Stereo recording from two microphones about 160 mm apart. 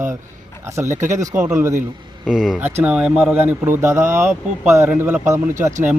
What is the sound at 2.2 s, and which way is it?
A man's voice, 5° right (ahead or behind).